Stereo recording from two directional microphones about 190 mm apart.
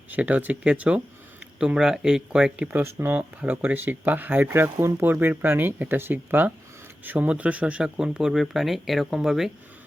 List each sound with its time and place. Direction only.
0.1 s speech: 10° right (ahead or behind)